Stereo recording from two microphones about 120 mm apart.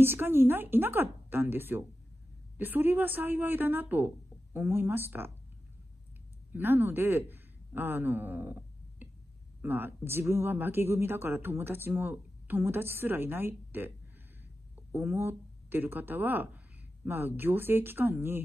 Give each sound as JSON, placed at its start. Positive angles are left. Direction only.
{"t": 0.0, "sound": "speech", "side_deg": -20}
{"t": 6.5, "sound": "a man's voice", "side_deg": -15}